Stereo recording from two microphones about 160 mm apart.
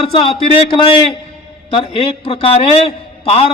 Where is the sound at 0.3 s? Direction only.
35° left (ahead or behind).